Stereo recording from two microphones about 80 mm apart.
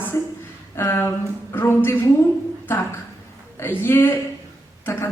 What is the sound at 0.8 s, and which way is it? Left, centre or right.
A woman's voice, left.